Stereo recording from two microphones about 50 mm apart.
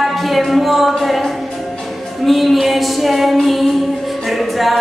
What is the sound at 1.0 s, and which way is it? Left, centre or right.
Music, centre.